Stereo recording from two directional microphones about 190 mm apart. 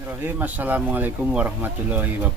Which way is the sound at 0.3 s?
10° right (ahead or behind).